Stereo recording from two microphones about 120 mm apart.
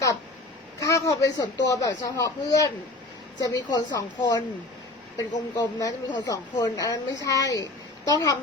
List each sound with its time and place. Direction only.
0.8 s a woman's voice: 30° left (ahead or behind)
5.5 s a woman's voice: 40° left (ahead or behind)